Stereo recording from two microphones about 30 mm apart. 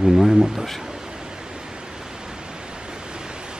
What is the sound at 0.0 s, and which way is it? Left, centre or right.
Speech, centre.